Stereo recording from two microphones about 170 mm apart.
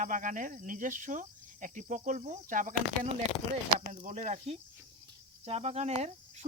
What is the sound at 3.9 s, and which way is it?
Speech, 45° right (ahead or behind).